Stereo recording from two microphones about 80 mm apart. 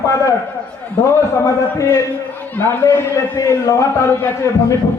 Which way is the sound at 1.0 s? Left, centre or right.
Left.